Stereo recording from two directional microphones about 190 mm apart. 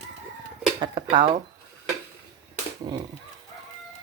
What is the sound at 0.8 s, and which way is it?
Speech, 25° right (ahead or behind).